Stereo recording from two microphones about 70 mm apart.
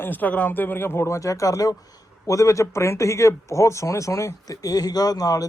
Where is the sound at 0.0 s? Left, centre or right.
Left.